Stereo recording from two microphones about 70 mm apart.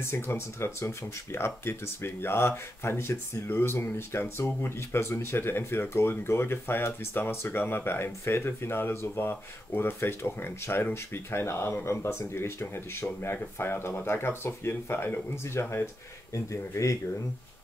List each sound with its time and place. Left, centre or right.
0.0 s speech: left
16.7 s speech: left